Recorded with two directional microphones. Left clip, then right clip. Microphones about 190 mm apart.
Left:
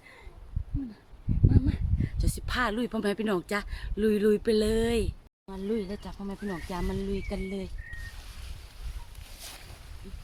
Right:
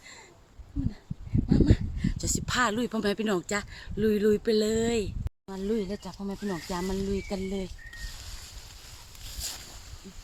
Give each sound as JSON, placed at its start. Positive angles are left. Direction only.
{"t": 1.5, "sound": "speech", "side_deg": -25}
{"t": 5.5, "sound": "speech", "side_deg": -35}